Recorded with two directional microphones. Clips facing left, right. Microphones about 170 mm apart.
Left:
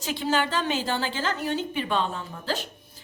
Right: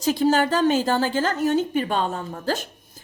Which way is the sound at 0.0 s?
40° right (ahead or behind).